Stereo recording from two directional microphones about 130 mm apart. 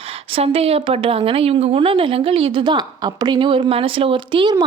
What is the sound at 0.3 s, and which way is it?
A woman's voice, 45° right (ahead or behind).